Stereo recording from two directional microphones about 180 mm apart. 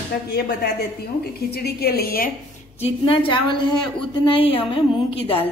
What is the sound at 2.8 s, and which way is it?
A woman's voice, 30° left (ahead or behind).